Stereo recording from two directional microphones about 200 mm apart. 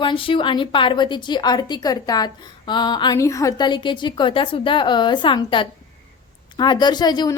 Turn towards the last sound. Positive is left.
turn(degrees=20)  # may be behind; listen again after turning